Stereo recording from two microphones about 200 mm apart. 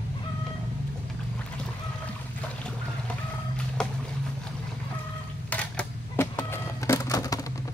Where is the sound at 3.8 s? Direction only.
5° left (ahead or behind).